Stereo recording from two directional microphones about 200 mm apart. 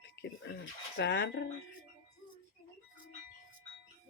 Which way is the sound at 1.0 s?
60° left (ahead or behind).